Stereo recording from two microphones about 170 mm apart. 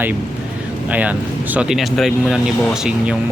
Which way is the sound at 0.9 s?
10° right (ahead or behind).